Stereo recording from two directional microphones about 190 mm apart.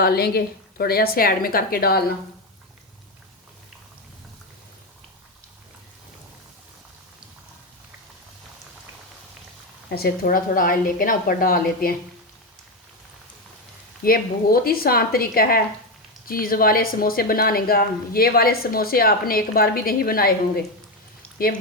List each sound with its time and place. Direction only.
0.0 s speech: 55° left (ahead or behind)
9.9 s speech: 50° left (ahead or behind)
14.0 s speech: 50° left (ahead or behind)